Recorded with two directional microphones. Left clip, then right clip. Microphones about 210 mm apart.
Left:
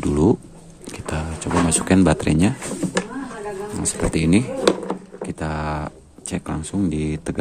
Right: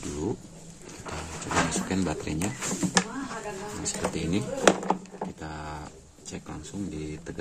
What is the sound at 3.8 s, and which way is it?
Speech, 45° left (ahead or behind).